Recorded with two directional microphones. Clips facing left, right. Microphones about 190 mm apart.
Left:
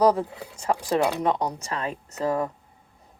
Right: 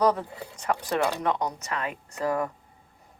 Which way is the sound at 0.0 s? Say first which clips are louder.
Left 3 dB; 30° left (ahead or behind).